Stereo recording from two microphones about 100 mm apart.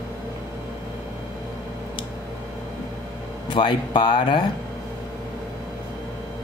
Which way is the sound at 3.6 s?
50° left (ahead or behind).